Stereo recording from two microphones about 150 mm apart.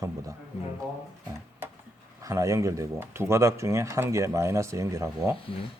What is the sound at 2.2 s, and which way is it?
Speech, 20° right (ahead or behind).